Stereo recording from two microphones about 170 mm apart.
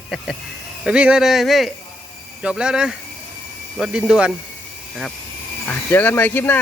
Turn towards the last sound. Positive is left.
turn(degrees=10)  # may be behind; listen again after turning